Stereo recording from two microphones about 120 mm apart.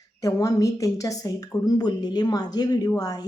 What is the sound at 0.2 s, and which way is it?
Speech, 30° left (ahead or behind).